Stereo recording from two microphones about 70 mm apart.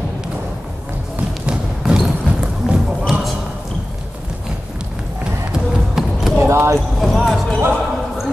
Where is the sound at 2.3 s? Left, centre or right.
Centre.